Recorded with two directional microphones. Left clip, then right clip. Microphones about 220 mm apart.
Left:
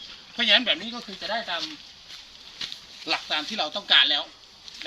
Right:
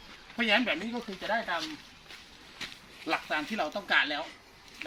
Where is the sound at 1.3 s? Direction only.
5° left (ahead or behind).